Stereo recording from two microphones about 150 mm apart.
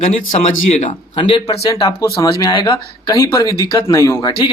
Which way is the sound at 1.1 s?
35° left (ahead or behind).